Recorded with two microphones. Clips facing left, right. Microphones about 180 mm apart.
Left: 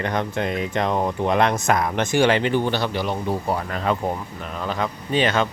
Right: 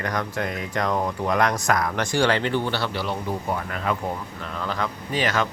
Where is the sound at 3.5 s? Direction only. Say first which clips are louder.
Left 3 dB; 30° left (ahead or behind).